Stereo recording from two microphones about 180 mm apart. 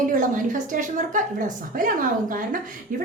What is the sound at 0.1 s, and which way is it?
A woman's voice, 45° right (ahead or behind).